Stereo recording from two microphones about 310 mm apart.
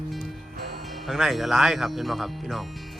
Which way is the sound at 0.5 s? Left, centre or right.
Right.